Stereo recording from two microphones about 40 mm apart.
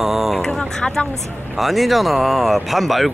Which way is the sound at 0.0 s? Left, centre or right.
Centre.